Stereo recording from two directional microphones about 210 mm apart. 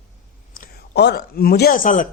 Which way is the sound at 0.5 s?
45° left (ahead or behind).